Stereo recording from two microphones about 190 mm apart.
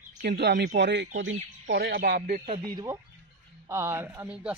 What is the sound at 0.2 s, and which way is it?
Speech, 60° right (ahead or behind).